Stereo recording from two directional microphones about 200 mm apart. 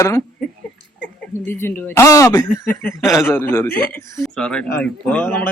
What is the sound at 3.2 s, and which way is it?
A man's voice, 10° left (ahead or behind).